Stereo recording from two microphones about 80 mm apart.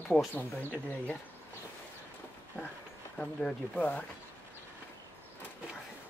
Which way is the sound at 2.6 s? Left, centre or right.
Centre.